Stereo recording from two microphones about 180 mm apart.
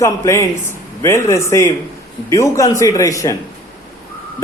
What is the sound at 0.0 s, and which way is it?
Speech, 15° left (ahead or behind).